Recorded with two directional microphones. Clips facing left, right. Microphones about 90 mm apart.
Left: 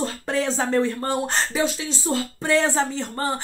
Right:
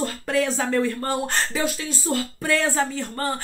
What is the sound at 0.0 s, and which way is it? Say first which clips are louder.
Speech: right 1 dB; 30° left (ahead or behind).